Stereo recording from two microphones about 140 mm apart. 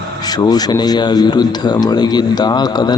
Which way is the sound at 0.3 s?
30° left (ahead or behind).